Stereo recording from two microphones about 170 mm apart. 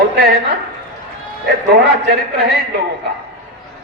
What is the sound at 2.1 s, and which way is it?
Speech, 70° right (ahead or behind).